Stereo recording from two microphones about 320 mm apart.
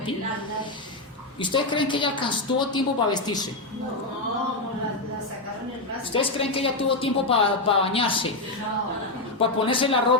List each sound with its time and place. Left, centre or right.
1.4 s speech: centre
6.1 s speech: centre
9.4 s speech: centre